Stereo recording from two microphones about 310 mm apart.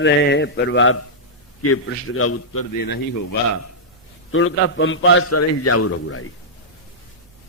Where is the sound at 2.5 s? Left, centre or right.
Left.